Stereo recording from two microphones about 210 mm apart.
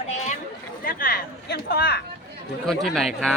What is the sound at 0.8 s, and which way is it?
Speech, 45° left (ahead or behind).